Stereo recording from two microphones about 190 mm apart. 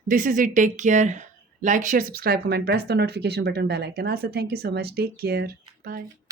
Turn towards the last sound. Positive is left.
turn(degrees=-55)  # may be behind; listen again after turning